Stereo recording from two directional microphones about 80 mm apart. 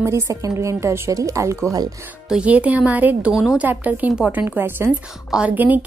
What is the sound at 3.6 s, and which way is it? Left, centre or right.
A woman's voice, right.